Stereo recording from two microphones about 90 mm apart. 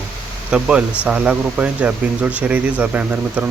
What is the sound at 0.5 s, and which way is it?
Speech, 10° right (ahead or behind).